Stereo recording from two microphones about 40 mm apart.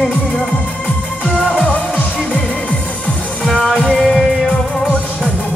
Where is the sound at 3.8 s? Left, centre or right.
Centre.